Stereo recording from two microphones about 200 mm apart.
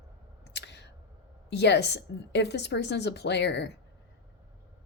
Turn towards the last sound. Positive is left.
turn(degrees=60)  # may be behind; listen again after turning